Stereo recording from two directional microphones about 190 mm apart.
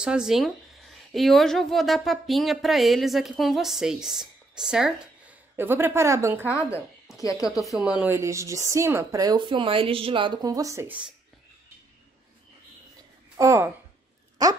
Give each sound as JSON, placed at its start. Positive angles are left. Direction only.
{"t": 0.0, "sound": "speech", "side_deg": -5}
{"t": 7.2, "sound": "speech", "side_deg": 20}
{"t": 7.5, "sound": "a woman's voice", "side_deg": 0}
{"t": 13.4, "sound": "a woman's voice", "side_deg": -15}